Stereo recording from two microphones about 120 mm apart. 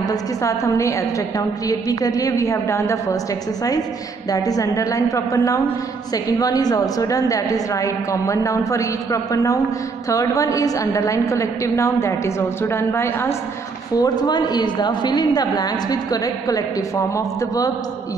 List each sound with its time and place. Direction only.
0.0 s a woman's voice: 30° left (ahead or behind)
4.3 s a woman's voice: 30° left (ahead or behind)
13.9 s a woman's voice: 35° left (ahead or behind)